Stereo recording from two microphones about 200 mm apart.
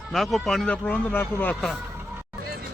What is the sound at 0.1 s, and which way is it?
Speech, centre (ahead or behind).